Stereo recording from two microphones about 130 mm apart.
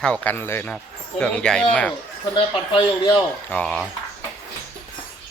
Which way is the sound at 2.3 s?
40° left (ahead or behind).